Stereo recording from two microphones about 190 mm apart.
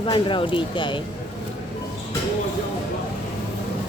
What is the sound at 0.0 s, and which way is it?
Speech, 25° left (ahead or behind).